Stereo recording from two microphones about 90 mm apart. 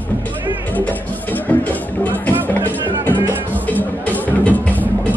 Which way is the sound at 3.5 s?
20° left (ahead or behind).